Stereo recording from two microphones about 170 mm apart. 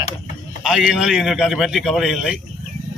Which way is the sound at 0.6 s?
5° right (ahead or behind).